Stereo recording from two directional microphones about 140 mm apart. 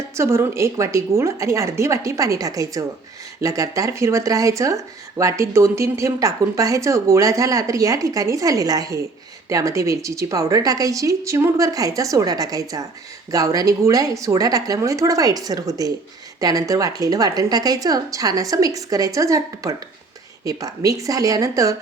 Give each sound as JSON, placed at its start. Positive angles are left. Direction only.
{"t": 0.2, "sound": "speech", "side_deg": -20}